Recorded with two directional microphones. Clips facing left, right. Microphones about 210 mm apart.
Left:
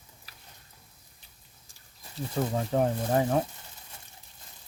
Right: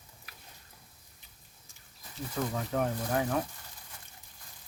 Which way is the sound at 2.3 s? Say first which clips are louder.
Left 5 dB; 30° left (ahead or behind).